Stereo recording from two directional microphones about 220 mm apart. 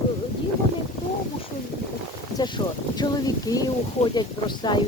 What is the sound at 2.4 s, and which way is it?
Speech, 20° left (ahead or behind).